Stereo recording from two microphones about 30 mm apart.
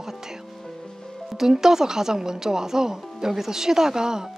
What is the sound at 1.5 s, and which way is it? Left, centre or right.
Speech, centre.